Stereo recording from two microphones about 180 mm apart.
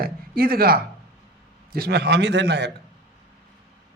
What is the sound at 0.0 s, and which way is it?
A man's voice, 55° right (ahead or behind).